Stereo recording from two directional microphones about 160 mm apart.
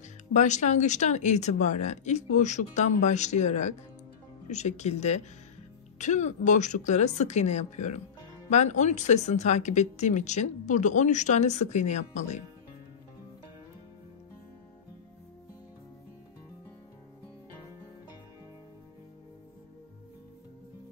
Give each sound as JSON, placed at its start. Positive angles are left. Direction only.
{"t": 0.3, "sound": "speech", "side_deg": 50}